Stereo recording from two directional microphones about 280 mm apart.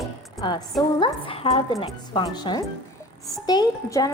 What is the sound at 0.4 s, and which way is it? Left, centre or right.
A woman's voice, centre.